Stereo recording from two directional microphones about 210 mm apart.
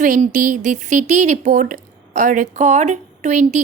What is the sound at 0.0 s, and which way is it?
Speech, 40° right (ahead or behind).